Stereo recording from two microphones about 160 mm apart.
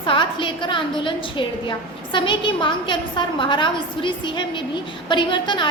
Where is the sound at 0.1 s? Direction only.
30° left (ahead or behind).